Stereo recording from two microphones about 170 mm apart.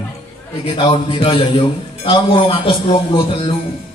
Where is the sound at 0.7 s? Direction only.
30° left (ahead or behind).